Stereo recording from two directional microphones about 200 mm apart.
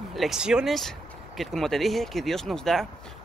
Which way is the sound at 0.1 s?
Centre (ahead or behind).